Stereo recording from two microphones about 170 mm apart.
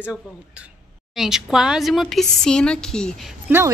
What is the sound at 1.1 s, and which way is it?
Speech, 5° right (ahead or behind).